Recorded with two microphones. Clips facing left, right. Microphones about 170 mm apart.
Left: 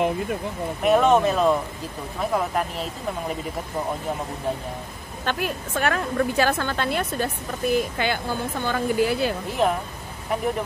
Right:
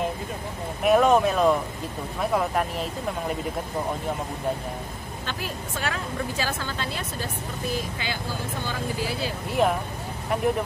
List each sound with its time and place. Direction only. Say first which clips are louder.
0.8 s speech: left 1 dB; centre (ahead or behind)
5.2 s a woman's voice: left 7 dB; 60° left (ahead or behind)
9.6 s speech: left 1 dB; 5° right (ahead or behind)